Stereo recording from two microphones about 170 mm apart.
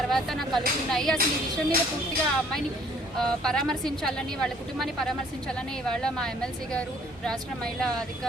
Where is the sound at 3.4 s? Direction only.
5° left (ahead or behind).